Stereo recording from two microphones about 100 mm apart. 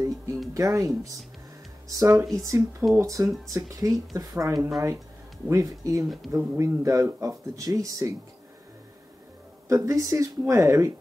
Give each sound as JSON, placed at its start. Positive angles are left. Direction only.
{"t": 0.6, "sound": "speech", "side_deg": -35}
{"t": 9.7, "sound": "speech", "side_deg": -30}